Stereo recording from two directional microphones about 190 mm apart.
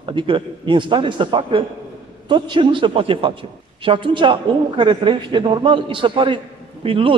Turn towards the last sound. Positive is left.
turn(degrees=-30)  # may be behind; listen again after turning